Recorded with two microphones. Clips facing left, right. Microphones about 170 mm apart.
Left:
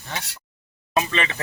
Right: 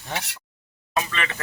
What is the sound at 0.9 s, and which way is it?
Speech, 20° left (ahead or behind).